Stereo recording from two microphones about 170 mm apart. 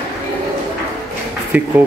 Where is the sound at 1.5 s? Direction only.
10° right (ahead or behind).